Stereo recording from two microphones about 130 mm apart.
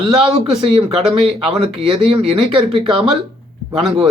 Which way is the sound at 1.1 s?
50° right (ahead or behind).